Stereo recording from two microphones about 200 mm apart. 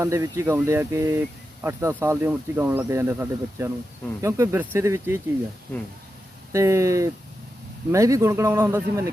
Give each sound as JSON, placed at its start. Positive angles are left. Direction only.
{"t": 0.0, "sound": "speech", "side_deg": -15}
{"t": 6.5, "sound": "speech", "side_deg": -15}